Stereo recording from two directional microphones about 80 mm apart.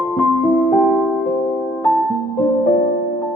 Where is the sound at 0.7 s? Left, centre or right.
Centre.